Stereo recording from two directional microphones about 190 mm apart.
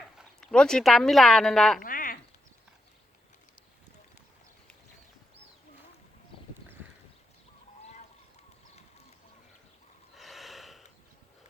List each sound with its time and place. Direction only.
0.2 s speech: 5° left (ahead or behind)
1.8 s a sound: 45° left (ahead or behind)
7.8 s goose: 35° left (ahead or behind)
10.2 s gasp: centre (ahead or behind)